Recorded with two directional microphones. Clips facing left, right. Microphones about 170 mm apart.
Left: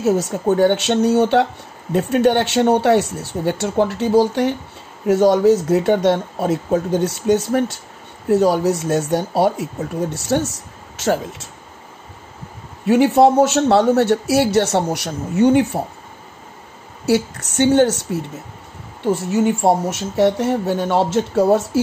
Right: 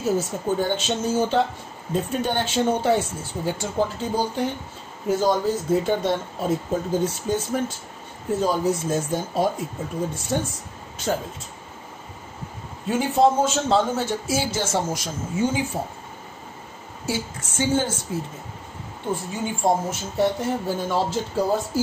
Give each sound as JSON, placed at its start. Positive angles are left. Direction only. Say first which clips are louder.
{"t": 0.0, "sound": "speech", "louder": "left 6 dB", "side_deg": 70}
{"t": 12.8, "sound": "speech", "louder": "left 7 dB", "side_deg": 70}
{"t": 17.0, "sound": "speech", "louder": "left 11 dB", "side_deg": 70}